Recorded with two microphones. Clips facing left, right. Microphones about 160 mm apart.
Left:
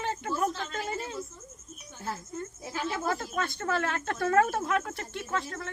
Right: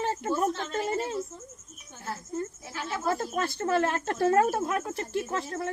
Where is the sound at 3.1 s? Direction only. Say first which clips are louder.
Right 3 dB; 35° right (ahead or behind).